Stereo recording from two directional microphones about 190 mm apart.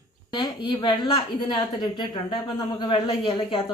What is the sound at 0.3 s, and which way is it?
Speech, 20° left (ahead or behind).